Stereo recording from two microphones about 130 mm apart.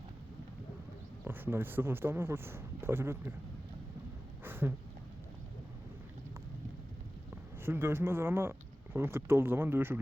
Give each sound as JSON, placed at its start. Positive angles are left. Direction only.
{"t": 1.2, "sound": "speech", "side_deg": -15}
{"t": 4.4, "sound": "a sound", "side_deg": -15}
{"t": 7.6, "sound": "speech", "side_deg": -20}